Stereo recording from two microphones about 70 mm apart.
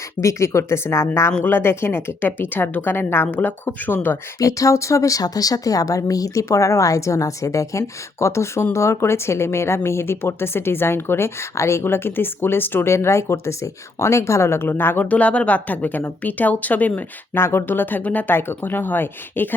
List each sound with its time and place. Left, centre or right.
0.2 s a woman's voice: left
4.4 s a woman's voice: left
17.3 s speech: left